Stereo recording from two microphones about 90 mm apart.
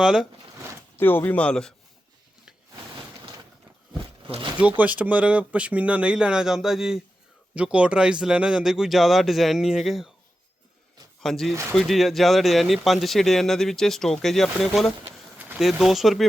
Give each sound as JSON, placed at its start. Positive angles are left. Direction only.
{"t": 0.0, "sound": "speech", "side_deg": -5}
{"t": 0.9, "sound": "speech", "side_deg": 25}
{"t": 2.9, "sound": "a sound", "side_deg": -65}
{"t": 4.8, "sound": "speech", "side_deg": -15}
{"t": 11.2, "sound": "speech", "side_deg": 5}
{"t": 15.0, "sound": "a sound", "side_deg": -20}
{"t": 15.5, "sound": "speech", "side_deg": 0}